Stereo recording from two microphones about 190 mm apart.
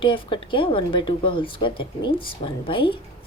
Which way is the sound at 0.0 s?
25° left (ahead or behind).